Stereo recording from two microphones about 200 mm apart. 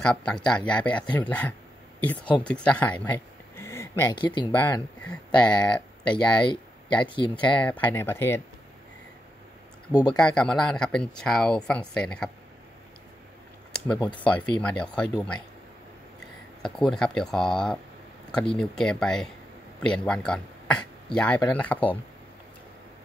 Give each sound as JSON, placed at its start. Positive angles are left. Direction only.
{"t": 0.0, "sound": "speech", "side_deg": 5}
{"t": 3.5, "sound": "a sound", "side_deg": 15}
{"t": 4.5, "sound": "speech", "side_deg": 10}
{"t": 6.4, "sound": "speech", "side_deg": 25}
{"t": 7.8, "sound": "speech", "side_deg": 10}
{"t": 9.9, "sound": "speech", "side_deg": 20}
{"t": 10.2, "sound": "speech", "side_deg": 5}
{"t": 14.0, "sound": "speech", "side_deg": 5}
{"t": 16.6, "sound": "speech", "side_deg": 5}